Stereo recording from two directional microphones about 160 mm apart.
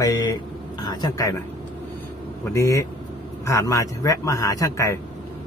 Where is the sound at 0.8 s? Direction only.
20° left (ahead or behind).